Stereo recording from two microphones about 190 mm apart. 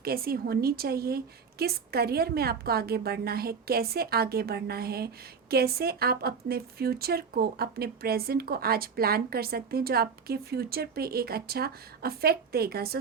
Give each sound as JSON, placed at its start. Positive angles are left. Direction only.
{"t": 0.0, "sound": "a woman's voice", "side_deg": -50}